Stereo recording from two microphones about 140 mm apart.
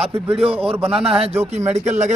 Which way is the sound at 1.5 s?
55° right (ahead or behind).